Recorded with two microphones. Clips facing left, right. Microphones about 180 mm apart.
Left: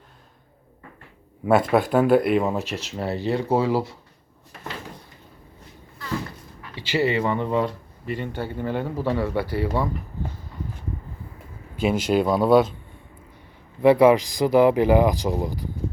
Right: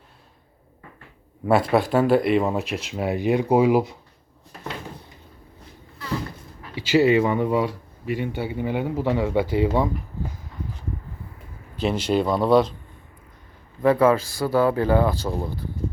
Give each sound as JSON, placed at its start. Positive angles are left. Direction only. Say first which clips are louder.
{"t": 1.5, "sound": "speech", "louder": "even", "side_deg": 0}
{"t": 2.7, "sound": "speech", "louder": "right 2 dB", "side_deg": -10}
{"t": 6.7, "sound": "speech", "louder": "right 5 dB", "side_deg": -15}
{"t": 12.0, "sound": "speech", "louder": "left 1 dB", "side_deg": 5}
{"t": 13.8, "sound": "speech", "louder": "left 3 dB", "side_deg": 15}